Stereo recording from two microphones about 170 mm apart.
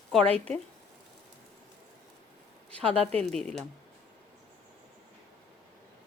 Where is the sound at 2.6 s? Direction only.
5° left (ahead or behind).